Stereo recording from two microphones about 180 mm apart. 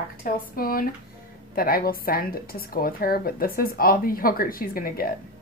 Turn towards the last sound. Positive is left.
turn(degrees=55)  # may be behind; listen again after turning